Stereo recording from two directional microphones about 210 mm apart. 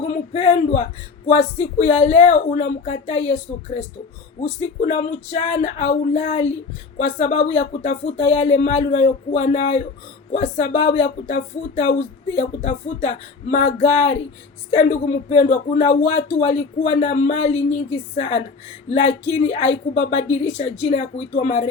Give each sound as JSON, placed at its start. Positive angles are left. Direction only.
{"t": 0.0, "sound": "speech", "side_deg": 35}